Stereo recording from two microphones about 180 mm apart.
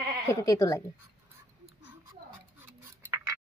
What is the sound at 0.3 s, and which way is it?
Speech, 15° left (ahead or behind).